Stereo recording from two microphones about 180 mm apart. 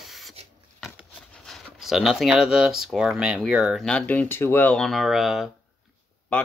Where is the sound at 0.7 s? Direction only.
Centre (ahead or behind).